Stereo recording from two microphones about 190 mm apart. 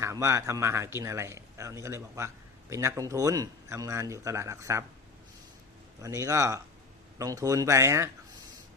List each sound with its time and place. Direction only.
0.0 s a man's voice: 15° right (ahead or behind)
6.0 s a man's voice: 15° right (ahead or behind)